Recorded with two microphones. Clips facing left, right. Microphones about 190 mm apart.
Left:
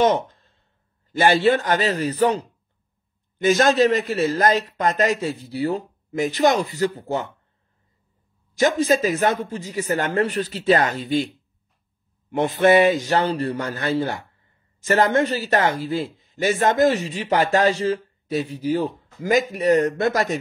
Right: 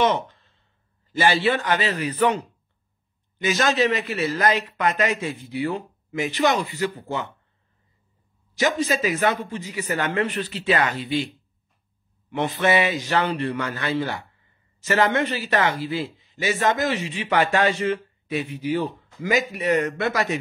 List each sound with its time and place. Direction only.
0.0 s a man's voice: 45° left (ahead or behind)
3.4 s a man's voice: 50° left (ahead or behind)
8.5 s a man's voice: 50° left (ahead or behind)
12.3 s a man's voice: 50° left (ahead or behind)